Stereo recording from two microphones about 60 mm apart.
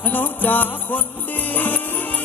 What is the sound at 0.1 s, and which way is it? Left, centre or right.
Music, left.